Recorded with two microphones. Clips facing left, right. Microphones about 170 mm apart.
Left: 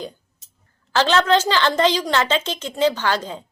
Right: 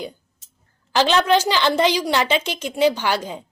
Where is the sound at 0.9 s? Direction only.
15° right (ahead or behind).